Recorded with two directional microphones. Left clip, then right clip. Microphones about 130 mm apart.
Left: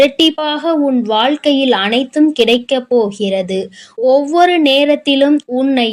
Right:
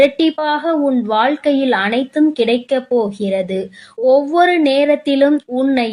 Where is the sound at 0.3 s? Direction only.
20° left (ahead or behind).